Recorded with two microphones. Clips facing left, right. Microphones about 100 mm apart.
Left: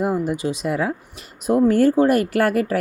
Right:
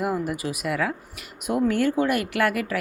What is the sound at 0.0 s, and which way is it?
A woman's voice, 25° left (ahead or behind).